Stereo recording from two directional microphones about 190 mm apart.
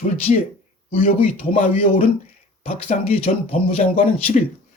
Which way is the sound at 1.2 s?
40° left (ahead or behind).